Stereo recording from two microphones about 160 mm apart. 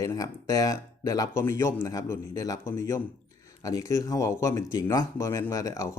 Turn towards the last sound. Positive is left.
turn(degrees=20)  # may be behind; listen again after turning